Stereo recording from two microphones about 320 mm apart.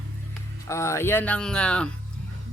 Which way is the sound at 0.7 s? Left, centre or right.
Centre.